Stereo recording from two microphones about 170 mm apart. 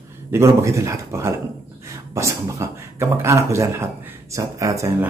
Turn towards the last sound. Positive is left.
turn(degrees=-20)  # may be behind; listen again after turning